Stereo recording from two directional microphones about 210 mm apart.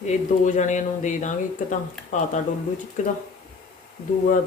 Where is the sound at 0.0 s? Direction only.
35° left (ahead or behind).